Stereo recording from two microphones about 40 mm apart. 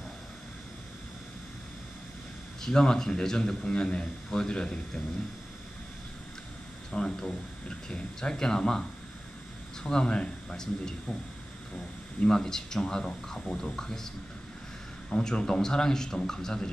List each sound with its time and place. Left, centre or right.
2.6 s a man's voice: centre
6.9 s a man's voice: centre
9.8 s a man's voice: left